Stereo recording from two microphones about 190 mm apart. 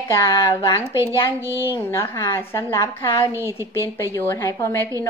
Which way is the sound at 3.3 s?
15° right (ahead or behind).